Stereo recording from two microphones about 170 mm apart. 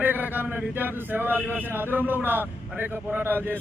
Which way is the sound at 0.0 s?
10° right (ahead or behind).